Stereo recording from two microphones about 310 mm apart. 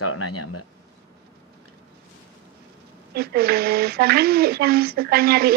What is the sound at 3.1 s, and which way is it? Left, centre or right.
Speech, right.